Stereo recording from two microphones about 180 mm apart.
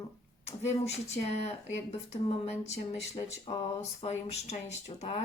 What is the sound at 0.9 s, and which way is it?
Speech, 35° left (ahead or behind).